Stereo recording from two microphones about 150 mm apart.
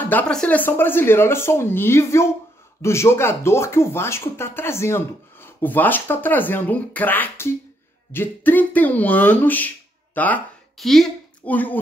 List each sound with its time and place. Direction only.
0.0 s speech: 10° left (ahead or behind)